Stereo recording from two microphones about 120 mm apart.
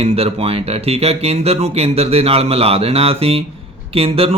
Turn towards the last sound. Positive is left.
turn(degrees=-55)  # may be behind; listen again after turning